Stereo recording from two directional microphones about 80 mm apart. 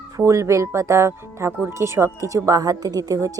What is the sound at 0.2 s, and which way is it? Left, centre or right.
Speech, right.